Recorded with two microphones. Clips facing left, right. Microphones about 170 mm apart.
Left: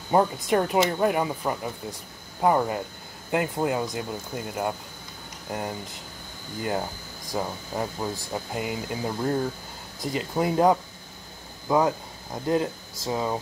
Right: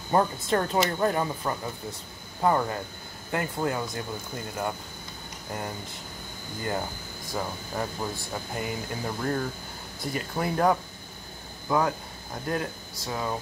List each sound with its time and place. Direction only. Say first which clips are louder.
0.1 s speech: left 3 dB; 15° left (ahead or behind)